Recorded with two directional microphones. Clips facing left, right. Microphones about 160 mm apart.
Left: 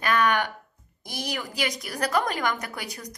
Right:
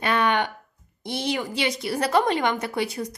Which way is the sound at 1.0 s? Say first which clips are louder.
Right 6 dB; 25° right (ahead or behind).